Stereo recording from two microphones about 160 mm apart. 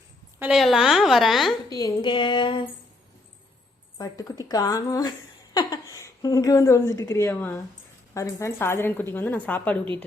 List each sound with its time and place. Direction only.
0.5 s a woman's voice: centre (ahead or behind)
1.7 s a woman's voice: 25° left (ahead or behind)
3.9 s a woman's voice: 25° left (ahead or behind)